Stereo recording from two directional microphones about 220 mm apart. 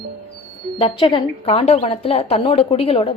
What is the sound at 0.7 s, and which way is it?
A woman's voice, 25° left (ahead or behind).